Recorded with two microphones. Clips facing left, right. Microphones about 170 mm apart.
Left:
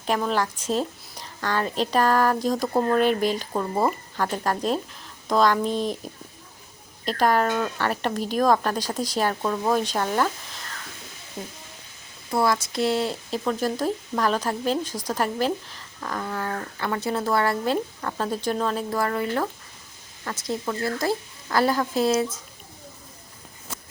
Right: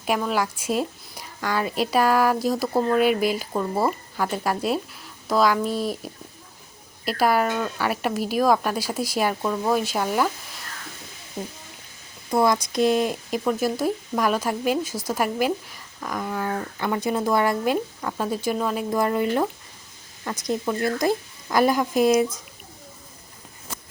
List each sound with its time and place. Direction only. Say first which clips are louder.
0.2 s a woman's voice: even; 10° right (ahead or behind)
7.0 s a woman's voice: even; 10° right (ahead or behind)
12.3 s a woman's voice: right 2 dB; 20° right (ahead or behind)